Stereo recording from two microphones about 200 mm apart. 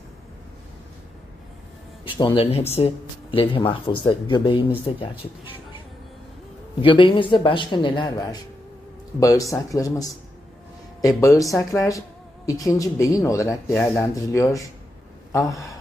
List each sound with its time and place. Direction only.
2.0 s speech: 25° left (ahead or behind)
6.8 s speech: 25° left (ahead or behind)